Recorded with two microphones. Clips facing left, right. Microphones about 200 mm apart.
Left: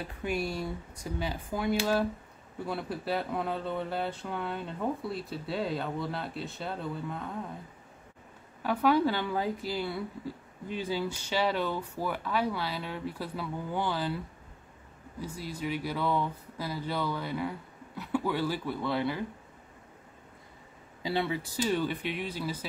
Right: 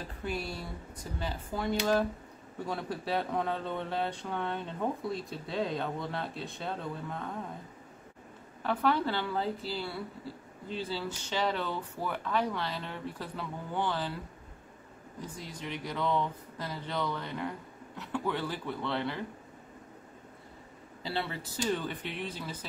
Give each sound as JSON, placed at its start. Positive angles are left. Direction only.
{"t": 0.0, "sound": "speech", "side_deg": 10}
{"t": 8.6, "sound": "speech", "side_deg": 10}
{"t": 15.1, "sound": "speech", "side_deg": 10}
{"t": 21.0, "sound": "speech", "side_deg": 15}